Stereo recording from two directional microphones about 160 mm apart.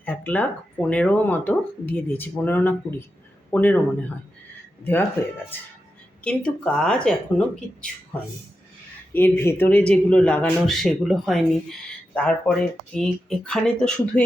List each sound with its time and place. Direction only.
0.0 s speech: 10° left (ahead or behind)
5.2 s speech: 10° left (ahead or behind)
9.1 s speech: 15° left (ahead or behind)